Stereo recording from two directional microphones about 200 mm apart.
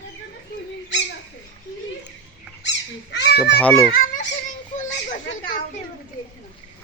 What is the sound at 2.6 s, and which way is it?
Cat, 60° left (ahead or behind).